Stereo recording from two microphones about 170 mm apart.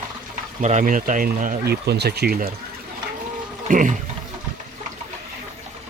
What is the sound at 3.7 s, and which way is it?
Speech, 50° right (ahead or behind).